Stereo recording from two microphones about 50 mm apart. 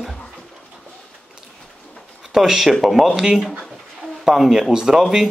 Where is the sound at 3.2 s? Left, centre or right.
Centre.